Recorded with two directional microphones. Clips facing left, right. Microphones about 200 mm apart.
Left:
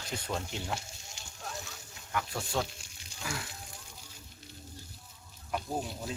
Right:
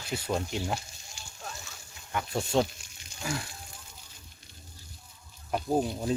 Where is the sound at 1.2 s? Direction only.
20° left (ahead or behind).